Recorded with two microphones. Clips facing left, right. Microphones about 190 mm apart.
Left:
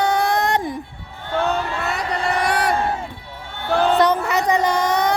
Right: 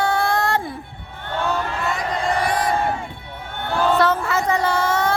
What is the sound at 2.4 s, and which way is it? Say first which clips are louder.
Crowd: left 1 dB; 70° left (ahead or behind).